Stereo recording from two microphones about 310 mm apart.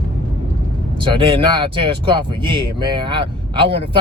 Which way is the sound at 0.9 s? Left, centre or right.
Centre.